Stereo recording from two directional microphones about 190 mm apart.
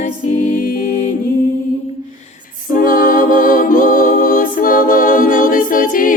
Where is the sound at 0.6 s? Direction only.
50° left (ahead or behind).